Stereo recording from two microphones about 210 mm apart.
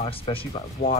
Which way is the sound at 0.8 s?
50° left (ahead or behind).